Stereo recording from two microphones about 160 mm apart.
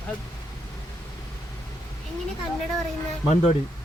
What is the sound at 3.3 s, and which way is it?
Speech, 45° left (ahead or behind).